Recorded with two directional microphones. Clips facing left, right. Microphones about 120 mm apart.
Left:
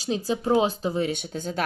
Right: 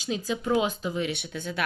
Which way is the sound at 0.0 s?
35° left (ahead or behind).